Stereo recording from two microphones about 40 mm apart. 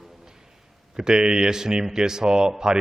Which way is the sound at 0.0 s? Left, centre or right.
Centre.